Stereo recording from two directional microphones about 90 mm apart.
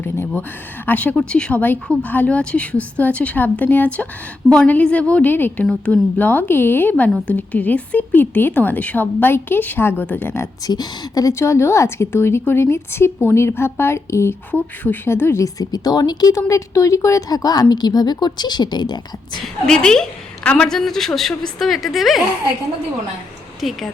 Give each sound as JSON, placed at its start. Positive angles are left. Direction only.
{"t": 0.0, "sound": "a woman's voice", "side_deg": 20}
{"t": 10.7, "sound": "a woman's voice", "side_deg": 45}
{"t": 15.5, "sound": "a woman's voice", "side_deg": 45}
{"t": 19.6, "sound": "a woman's voice", "side_deg": 5}
{"t": 23.6, "sound": "a woman's voice", "side_deg": 0}